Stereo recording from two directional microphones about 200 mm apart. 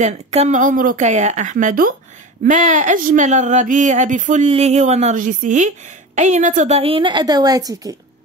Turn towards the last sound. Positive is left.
turn(degrees=-20)  # may be behind; listen again after turning